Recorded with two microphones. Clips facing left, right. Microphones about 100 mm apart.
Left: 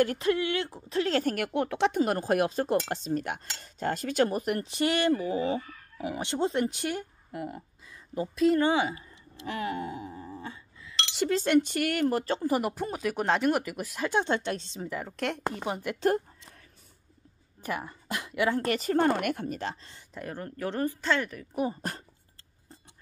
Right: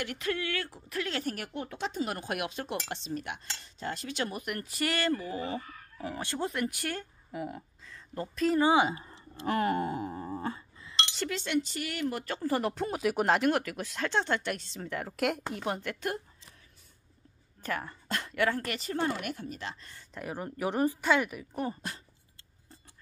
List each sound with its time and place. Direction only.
0.0 s cutlery: 35° left (ahead or behind)
1.0 s speech: 40° left (ahead or behind)
1.3 s speech: 65° left (ahead or behind)
2.1 s cutlery: 35° left (ahead or behind); by 7.1 s 20° left (ahead or behind)
7.3 s a woman's voice: centre (ahead or behind)
8.5 s speech: 15° right (ahead or behind)
8.9 s speech: 35° right (ahead or behind)
11.4 s speech: 55° left (ahead or behind)
12.4 s speech: 15° left (ahead or behind)
12.8 s speech: 5° right (ahead or behind); by 14.9 s 20° left (ahead or behind)
14.9 s a woman's voice: centre (ahead or behind)
17.6 s speech: 15° left (ahead or behind)
18.6 s speech: 40° left (ahead or behind)
20.2 s speech: 10° right (ahead or behind)